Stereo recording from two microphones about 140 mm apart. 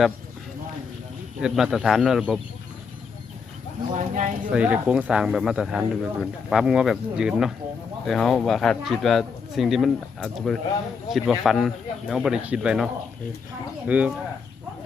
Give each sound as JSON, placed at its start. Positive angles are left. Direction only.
{"t": 1.4, "sound": "speech", "side_deg": -5}
{"t": 3.9, "sound": "speech", "side_deg": -65}
{"t": 4.5, "sound": "speech", "side_deg": -10}